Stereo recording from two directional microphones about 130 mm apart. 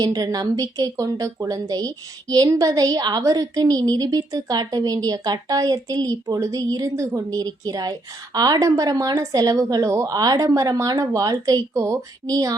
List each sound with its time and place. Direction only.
0.0 s a woman's voice: 30° right (ahead or behind)